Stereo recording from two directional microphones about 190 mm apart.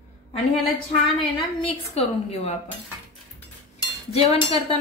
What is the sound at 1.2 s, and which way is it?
A woman's voice, 25° left (ahead or behind).